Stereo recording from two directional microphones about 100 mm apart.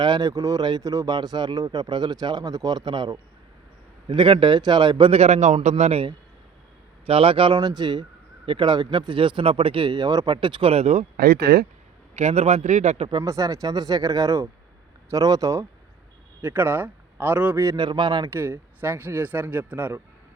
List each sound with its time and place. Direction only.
0.0 s speech: 45° right (ahead or behind)
5.1 s a man's voice: 90° right
7.0 s speech: 65° right (ahead or behind)
7.5 s speech: 45° right (ahead or behind)
10.2 s speech: 55° right (ahead or behind); by 10.9 s 85° right
12.1 s a man's voice: 90° right
13.2 s speech: 35° right (ahead or behind)
16.4 s a man's voice: 20° right (ahead or behind)
17.7 s speech: 50° right (ahead or behind)
18.3 s speech: 25° right (ahead or behind)